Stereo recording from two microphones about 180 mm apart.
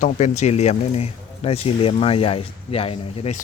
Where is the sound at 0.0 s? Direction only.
40° left (ahead or behind).